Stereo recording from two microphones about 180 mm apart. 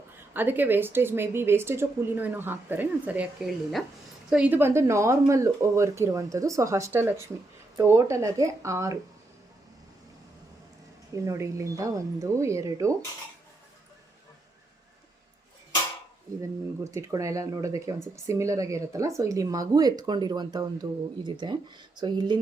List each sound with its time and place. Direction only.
0.2 s a woman's voice: 10° right (ahead or behind)
11.1 s a woman's voice: 15° right (ahead or behind)
16.4 s a woman's voice: 15° right (ahead or behind)